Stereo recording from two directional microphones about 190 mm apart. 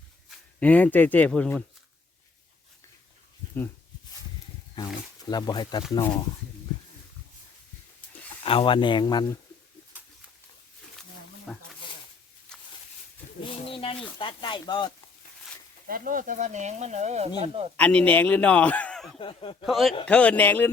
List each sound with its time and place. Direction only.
0.3 s speech: 5° left (ahead or behind)
5.3 s speech: 20° left (ahead or behind)
8.4 s speech: 25° left (ahead or behind)
11.5 s a man's voice: centre (ahead or behind)
13.4 s speech: 30° left (ahead or behind)
15.9 s speech: 45° right (ahead or behind)
17.7 s a man's voice: 5° left (ahead or behind)
19.2 s speech: 25° left (ahead or behind)
19.6 s a man's voice: centre (ahead or behind)